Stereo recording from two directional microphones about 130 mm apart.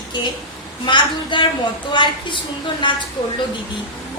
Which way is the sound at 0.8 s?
35° left (ahead or behind).